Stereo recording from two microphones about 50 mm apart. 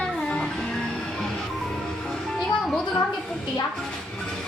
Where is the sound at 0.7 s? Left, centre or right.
Centre.